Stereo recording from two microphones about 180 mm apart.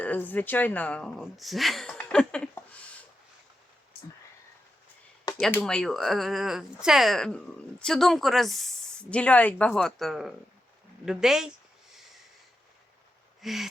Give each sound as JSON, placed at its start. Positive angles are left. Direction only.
{"t": 0.0, "sound": "speech", "side_deg": 10}
{"t": 5.4, "sound": "speech", "side_deg": 5}
{"t": 13.4, "sound": "speech", "side_deg": 0}